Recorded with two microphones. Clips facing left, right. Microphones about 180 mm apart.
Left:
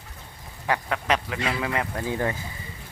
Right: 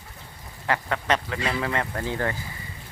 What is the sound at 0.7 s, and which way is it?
Speech, 5° left (ahead or behind).